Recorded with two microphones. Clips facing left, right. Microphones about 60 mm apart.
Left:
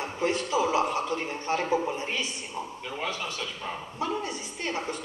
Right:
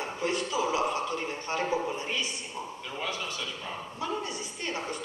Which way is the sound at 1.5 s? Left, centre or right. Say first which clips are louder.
Left 3 dB; left.